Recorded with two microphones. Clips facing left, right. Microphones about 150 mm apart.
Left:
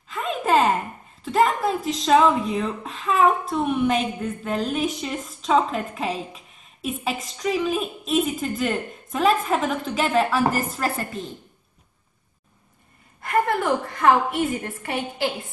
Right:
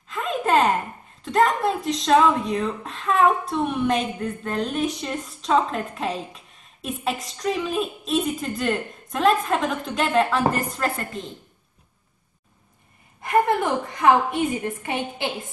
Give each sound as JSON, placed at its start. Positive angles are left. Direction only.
{"t": 0.1, "sound": "a sound", "side_deg": 0}
{"t": 1.2, "sound": "speech", "side_deg": 0}
{"t": 13.2, "sound": "a woman's voice", "side_deg": -20}